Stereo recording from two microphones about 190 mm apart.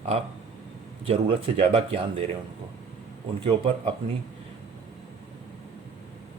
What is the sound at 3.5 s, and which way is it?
Speech, 25° right (ahead or behind).